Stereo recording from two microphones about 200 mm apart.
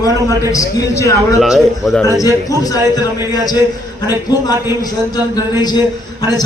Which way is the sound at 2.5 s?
20° left (ahead or behind).